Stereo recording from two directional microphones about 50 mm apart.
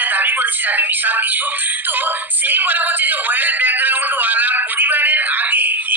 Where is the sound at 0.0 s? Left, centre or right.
Right.